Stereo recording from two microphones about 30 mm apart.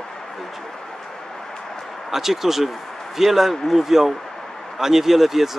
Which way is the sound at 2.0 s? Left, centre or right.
Centre.